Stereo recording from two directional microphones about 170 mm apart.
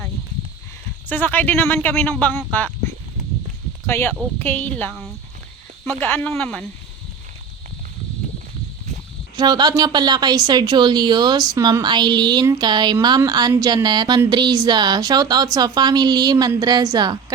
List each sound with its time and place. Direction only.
1.0 s speech: 10° left (ahead or behind)
9.3 s a woman's voice: 25° right (ahead or behind)